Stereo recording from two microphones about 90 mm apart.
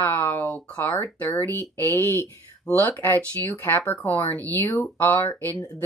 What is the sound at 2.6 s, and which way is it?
Speech, 15° left (ahead or behind).